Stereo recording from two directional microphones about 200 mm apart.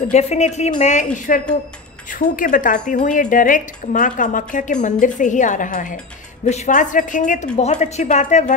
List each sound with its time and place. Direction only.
0.1 s a woman's voice: 35° left (ahead or behind)